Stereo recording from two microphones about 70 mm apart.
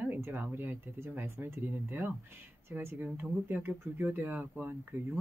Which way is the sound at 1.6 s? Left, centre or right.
Right.